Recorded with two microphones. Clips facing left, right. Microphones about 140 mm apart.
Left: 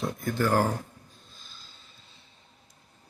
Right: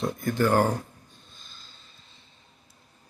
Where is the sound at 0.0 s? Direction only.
Centre (ahead or behind).